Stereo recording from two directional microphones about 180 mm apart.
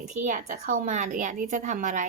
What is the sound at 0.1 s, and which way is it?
A woman's voice, 45° right (ahead or behind).